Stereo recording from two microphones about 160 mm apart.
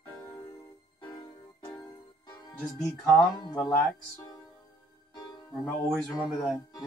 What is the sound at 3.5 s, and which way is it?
Speech, 10° left (ahead or behind).